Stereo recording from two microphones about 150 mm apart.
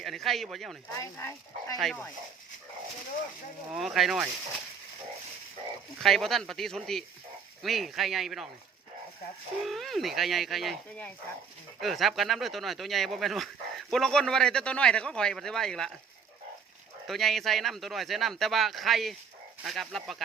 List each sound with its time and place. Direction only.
0.0 s speech: centre (ahead or behind)
0.9 s speech: 20° left (ahead or behind)
1.8 s speech: 5° left (ahead or behind)
3.7 s speech: centre (ahead or behind)
6.0 s speech: centre (ahead or behind)
9.6 s speech: centre (ahead or behind)
11.8 s speech: centre (ahead or behind)
17.1 s speech: centre (ahead or behind)